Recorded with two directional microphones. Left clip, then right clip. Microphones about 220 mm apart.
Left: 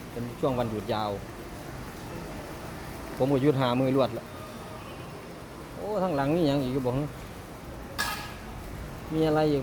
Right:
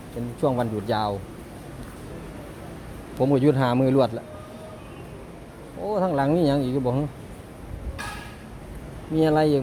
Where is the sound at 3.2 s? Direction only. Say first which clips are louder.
Right 4 dB; 25° right (ahead or behind).